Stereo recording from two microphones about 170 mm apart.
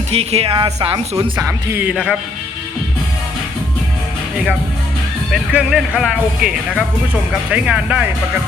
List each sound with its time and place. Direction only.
0.1 s speech: 35° right (ahead or behind)
1.4 s speech: 15° right (ahead or behind)
5.3 s speech: 5° right (ahead or behind)